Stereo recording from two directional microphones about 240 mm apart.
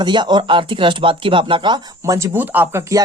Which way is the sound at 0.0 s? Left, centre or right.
Centre.